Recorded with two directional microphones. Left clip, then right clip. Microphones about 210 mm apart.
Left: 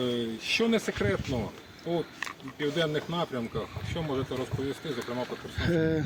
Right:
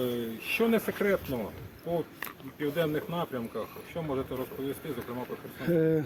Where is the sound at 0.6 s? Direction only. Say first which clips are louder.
Right 3 dB; 50° left (ahead or behind).